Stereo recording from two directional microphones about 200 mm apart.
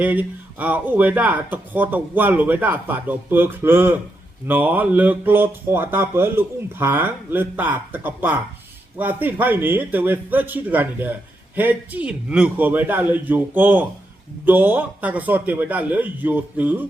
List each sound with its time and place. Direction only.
0.0 s speech: 10° right (ahead or behind)